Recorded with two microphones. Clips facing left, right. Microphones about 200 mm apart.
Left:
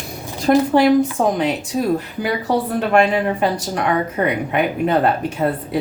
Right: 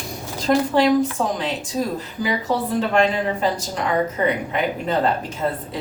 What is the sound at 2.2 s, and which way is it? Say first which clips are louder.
Speech: left 2 dB; 65° left (ahead or behind).